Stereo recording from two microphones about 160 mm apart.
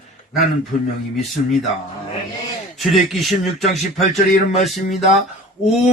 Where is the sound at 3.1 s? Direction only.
Centre (ahead or behind).